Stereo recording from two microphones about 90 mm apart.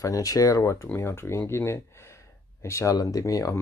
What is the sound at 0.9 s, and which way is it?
Speech, 25° left (ahead or behind).